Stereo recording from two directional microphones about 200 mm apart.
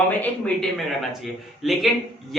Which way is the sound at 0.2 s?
5° left (ahead or behind).